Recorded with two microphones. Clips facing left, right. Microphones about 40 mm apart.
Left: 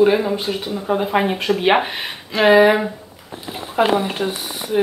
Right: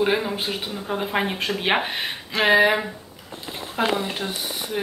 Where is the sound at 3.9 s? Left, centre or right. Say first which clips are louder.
Left 6 dB; centre.